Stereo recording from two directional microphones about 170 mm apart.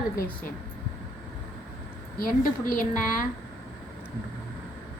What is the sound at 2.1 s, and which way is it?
A woman's voice, 55° left (ahead or behind).